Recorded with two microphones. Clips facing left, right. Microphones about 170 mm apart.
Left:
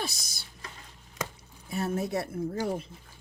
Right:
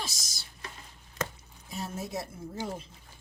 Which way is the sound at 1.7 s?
60° left (ahead or behind).